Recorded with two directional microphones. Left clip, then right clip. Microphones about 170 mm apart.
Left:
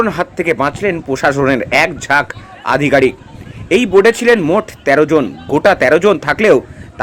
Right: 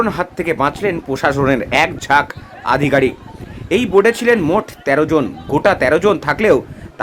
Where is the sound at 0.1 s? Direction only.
15° left (ahead or behind).